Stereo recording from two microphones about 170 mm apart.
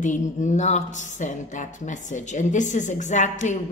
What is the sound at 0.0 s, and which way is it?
A woman's voice, 45° left (ahead or behind).